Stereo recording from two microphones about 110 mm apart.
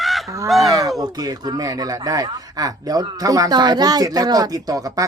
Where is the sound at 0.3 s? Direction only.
30° right (ahead or behind).